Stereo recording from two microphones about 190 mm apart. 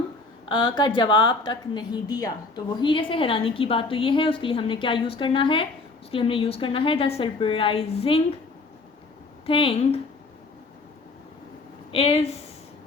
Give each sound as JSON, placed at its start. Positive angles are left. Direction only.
{"t": 0.4, "sound": "a woman's voice", "side_deg": 25}
{"t": 9.5, "sound": "a woman's voice", "side_deg": 30}
{"t": 11.9, "sound": "speech", "side_deg": 30}